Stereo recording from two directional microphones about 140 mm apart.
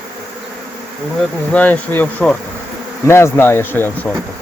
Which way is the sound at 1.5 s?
10° left (ahead or behind).